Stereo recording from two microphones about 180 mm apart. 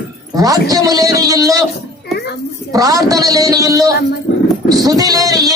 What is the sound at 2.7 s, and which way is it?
A man's voice, 20° right (ahead or behind).